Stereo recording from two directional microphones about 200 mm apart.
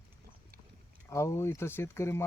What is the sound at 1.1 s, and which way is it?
Speech, 15° left (ahead or behind).